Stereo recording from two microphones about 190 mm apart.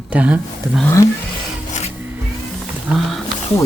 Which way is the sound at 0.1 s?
5° right (ahead or behind).